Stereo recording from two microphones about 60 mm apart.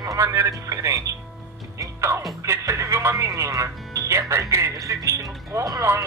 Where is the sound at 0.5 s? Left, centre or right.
Right.